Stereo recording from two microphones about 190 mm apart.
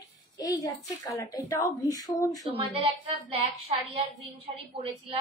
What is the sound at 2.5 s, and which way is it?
Speech, 30° right (ahead or behind).